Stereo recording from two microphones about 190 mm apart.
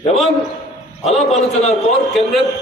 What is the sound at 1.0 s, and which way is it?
A man's voice, centre (ahead or behind).